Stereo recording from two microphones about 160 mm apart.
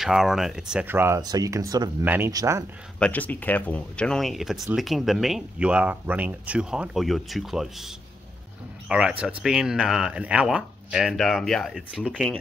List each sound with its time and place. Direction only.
0.0 s speech: centre (ahead or behind); by 2.6 s 20° right (ahead or behind)
3.0 s speech: 10° left (ahead or behind)